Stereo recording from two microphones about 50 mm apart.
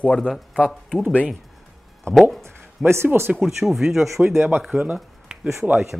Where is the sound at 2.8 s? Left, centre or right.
Right.